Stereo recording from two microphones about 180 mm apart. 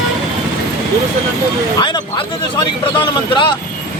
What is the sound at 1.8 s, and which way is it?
Speech, 25° left (ahead or behind).